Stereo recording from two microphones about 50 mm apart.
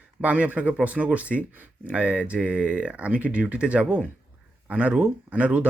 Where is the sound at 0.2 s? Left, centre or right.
Right.